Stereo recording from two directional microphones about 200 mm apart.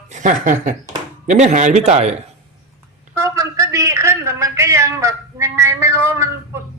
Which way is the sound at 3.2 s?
15° right (ahead or behind).